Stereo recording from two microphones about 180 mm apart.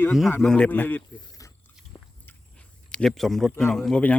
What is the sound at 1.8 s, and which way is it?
Speech, 5° left (ahead or behind).